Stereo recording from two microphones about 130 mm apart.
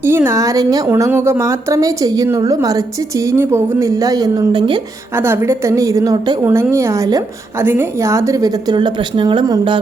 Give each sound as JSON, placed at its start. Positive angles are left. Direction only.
{"t": 0.0, "sound": "a woman's voice", "side_deg": -20}
{"t": 5.1, "sound": "a woman's voice", "side_deg": -20}